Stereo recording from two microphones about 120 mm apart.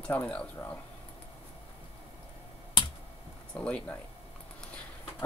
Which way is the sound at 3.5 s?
10° left (ahead or behind).